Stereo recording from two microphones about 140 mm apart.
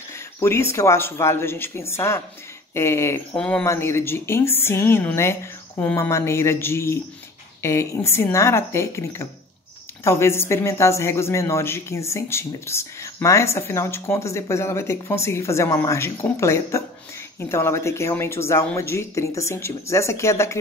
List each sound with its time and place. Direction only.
0.1 s speech: 20° left (ahead or behind)
3.3 s speech: 5° left (ahead or behind)
3.6 s speech: 20° left (ahead or behind)